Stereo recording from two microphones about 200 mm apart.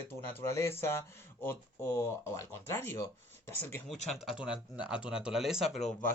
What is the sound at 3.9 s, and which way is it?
Speech, centre (ahead or behind).